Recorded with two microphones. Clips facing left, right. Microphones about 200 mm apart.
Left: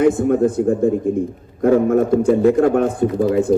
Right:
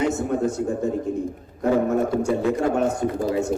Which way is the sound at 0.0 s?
55° left (ahead or behind).